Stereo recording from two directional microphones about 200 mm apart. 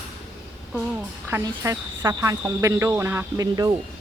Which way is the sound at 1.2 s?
15° right (ahead or behind).